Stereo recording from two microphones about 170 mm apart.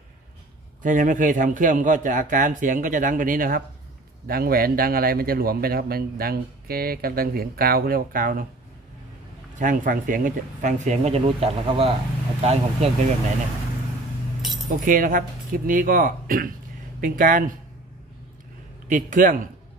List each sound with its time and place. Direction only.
0.8 s a man's voice: 50° right (ahead or behind)
9.6 s a man's voice: 50° right (ahead or behind); by 13.1 s 35° right (ahead or behind)
14.9 s a man's voice: 55° right (ahead or behind)
18.9 s a man's voice: 50° right (ahead or behind)